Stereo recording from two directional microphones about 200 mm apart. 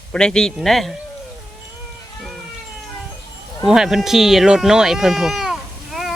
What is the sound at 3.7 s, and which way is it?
Speech, centre (ahead or behind).